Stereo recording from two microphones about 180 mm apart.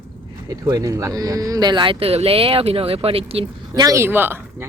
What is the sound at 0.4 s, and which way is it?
Speech, 20° right (ahead or behind).